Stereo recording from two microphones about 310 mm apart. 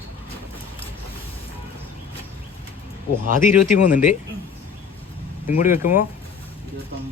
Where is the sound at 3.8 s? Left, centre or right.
Left.